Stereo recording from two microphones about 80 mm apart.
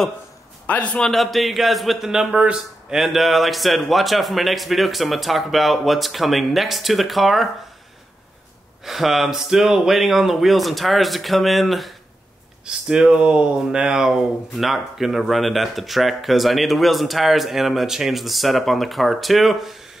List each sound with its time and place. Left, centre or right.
0.7 s a man's voice: centre
1.0 s speech: centre
8.8 s speech: centre
12.6 s speech: centre